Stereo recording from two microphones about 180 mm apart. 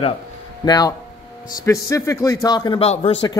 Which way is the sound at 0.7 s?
20° left (ahead or behind).